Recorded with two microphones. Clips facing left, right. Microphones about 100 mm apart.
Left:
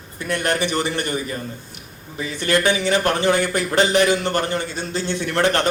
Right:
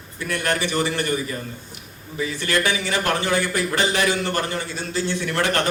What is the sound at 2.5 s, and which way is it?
A man's voice, 25° left (ahead or behind).